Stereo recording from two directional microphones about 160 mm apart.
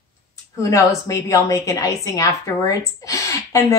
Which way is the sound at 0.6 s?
20° left (ahead or behind).